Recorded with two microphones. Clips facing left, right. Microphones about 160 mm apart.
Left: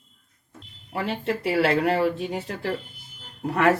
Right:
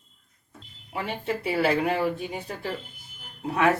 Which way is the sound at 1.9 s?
85° left.